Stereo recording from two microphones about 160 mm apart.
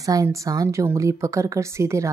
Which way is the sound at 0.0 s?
20° right (ahead or behind).